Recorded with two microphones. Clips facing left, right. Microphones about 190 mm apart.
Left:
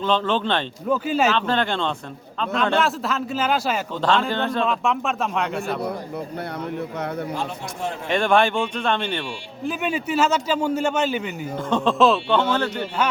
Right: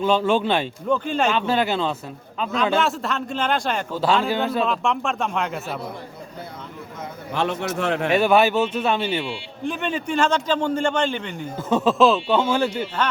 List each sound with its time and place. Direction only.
0.0 s speech: 10° right (ahead or behind)
0.9 s speech: 5° left (ahead or behind)
1.3 s speech: 10° right (ahead or behind)
3.9 s speech: 5° right (ahead or behind)
7.3 s speech: 70° right (ahead or behind)
8.1 s speech: 5° right (ahead or behind)
9.6 s a man's voice: 5° left (ahead or behind)
11.5 s speech: 5° right (ahead or behind)